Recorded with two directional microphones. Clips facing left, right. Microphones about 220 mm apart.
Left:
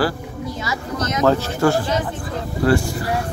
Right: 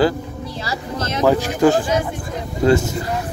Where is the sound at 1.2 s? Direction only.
15° right (ahead or behind).